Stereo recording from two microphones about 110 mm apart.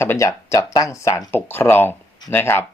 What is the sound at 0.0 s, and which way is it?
Speech, 25° left (ahead or behind).